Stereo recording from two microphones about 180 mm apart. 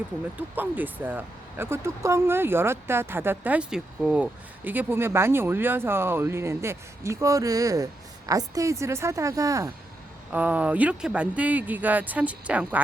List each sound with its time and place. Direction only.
0.3 s speech: 10° right (ahead or behind)